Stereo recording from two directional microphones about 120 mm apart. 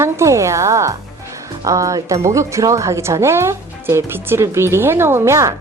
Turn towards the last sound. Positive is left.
turn(degrees=-25)  # may be behind; listen again after turning